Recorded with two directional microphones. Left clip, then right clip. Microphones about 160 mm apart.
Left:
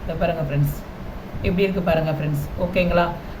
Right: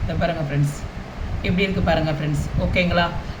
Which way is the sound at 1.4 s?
25° left (ahead or behind).